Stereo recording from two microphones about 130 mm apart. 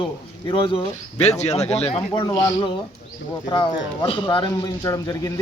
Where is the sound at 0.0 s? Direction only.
40° left (ahead or behind).